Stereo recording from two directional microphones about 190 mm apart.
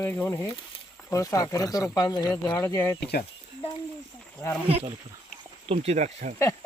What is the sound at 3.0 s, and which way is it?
Speech, 55° left (ahead or behind).